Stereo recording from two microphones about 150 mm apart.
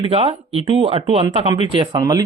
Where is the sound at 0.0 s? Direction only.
40° right (ahead or behind).